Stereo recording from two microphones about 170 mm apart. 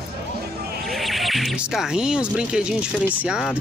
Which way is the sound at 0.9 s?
Centre (ahead or behind).